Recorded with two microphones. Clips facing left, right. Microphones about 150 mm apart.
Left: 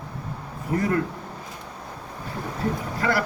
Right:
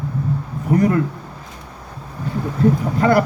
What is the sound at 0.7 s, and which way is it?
Speech, 30° right (ahead or behind).